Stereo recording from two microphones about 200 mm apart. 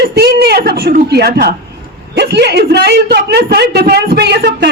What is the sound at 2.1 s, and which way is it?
A woman's voice, 55° right (ahead or behind).